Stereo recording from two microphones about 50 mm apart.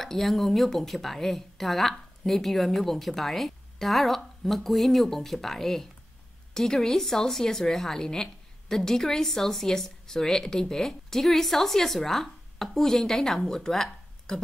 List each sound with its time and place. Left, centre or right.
0.0 s a woman's voice: centre